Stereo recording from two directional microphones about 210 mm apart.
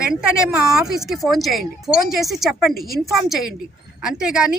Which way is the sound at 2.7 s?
45° left (ahead or behind).